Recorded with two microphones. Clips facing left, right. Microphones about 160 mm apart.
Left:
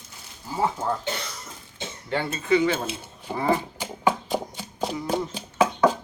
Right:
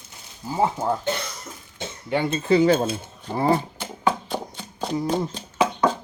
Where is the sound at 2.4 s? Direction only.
35° right (ahead or behind).